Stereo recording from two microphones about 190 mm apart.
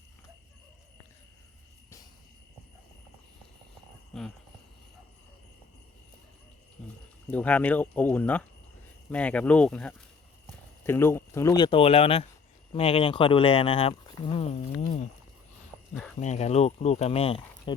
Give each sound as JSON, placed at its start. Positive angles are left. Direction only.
{"t": 4.1, "sound": "cricket", "side_deg": 0}
{"t": 7.3, "sound": "speech", "side_deg": 10}
{"t": 16.2, "sound": "speech", "side_deg": 35}